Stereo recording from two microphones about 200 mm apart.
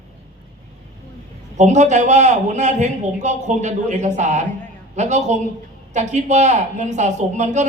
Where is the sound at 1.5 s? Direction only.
35° right (ahead or behind).